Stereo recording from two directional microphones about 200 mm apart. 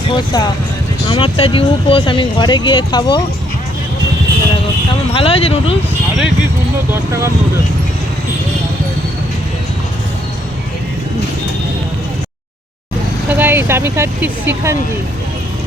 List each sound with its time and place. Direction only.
0.1 s speech: 20° left (ahead or behind)
5.1 s speech: 30° left (ahead or behind)
6.9 s speech: 15° right (ahead or behind)
13.3 s speech: 10° right (ahead or behind)